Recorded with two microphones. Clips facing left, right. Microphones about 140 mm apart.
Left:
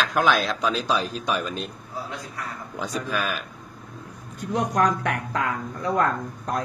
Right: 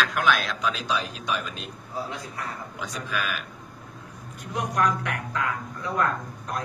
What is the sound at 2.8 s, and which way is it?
Speech, 40° left (ahead or behind).